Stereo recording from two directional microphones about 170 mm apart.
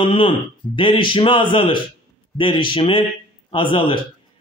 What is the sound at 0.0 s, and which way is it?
A man's voice, 30° left (ahead or behind).